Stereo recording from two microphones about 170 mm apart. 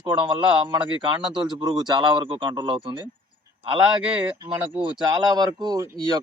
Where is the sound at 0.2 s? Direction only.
30° right (ahead or behind).